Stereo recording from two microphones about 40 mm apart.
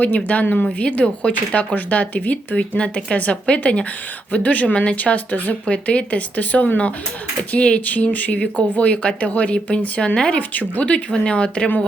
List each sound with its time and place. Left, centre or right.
0.0 s speech: left
5.7 s speech: left
7.5 s speech: left
8.0 s speech: left
10.9 s speech: left